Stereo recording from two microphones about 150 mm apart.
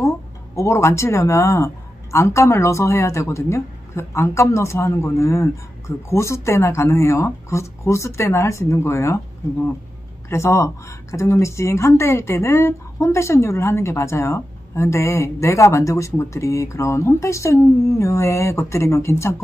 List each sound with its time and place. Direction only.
0.6 s a woman's voice: 20° left (ahead or behind)
10.3 s a woman's voice: 20° left (ahead or behind)